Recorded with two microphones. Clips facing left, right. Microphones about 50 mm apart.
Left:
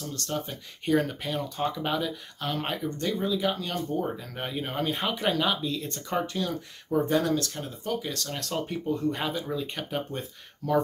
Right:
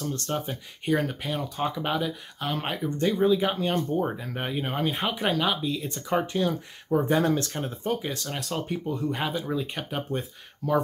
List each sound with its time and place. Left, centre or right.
0.5 s speech: centre
3.0 s speech: centre
6.1 s speech: right
7.2 s speech: right
8.4 s speech: centre